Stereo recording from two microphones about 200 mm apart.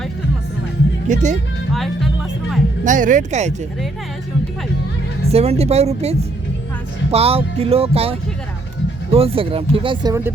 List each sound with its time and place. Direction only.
1.0 s speech: 40° right (ahead or behind)
1.7 s music: centre (ahead or behind)
2.8 s speech: 40° right (ahead or behind)
5.3 s speech: 30° right (ahead or behind)
7.1 s music: 30° right (ahead or behind)
9.1 s music: 30° right (ahead or behind)